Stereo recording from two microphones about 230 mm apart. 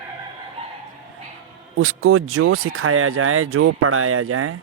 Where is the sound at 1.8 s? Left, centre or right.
Right.